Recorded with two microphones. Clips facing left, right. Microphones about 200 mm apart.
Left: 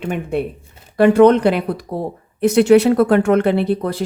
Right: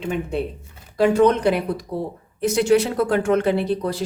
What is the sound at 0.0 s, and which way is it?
Speech, 60° left (ahead or behind).